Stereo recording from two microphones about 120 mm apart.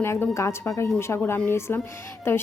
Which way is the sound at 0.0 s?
20° left (ahead or behind).